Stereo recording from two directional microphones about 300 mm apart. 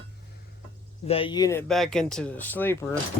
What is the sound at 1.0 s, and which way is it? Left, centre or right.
Speech, centre.